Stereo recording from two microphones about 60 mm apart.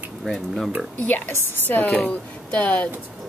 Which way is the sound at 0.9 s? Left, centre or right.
Left.